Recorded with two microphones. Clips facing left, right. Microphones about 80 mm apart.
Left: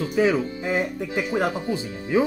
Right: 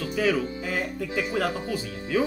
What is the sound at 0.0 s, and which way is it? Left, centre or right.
Speech, left.